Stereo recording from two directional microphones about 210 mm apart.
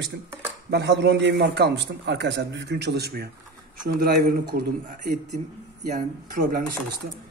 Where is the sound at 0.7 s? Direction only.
55° right (ahead or behind); by 6.6 s 40° right (ahead or behind).